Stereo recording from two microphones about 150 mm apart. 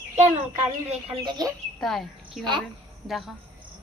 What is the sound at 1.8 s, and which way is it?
A woman's voice, centre (ahead or behind).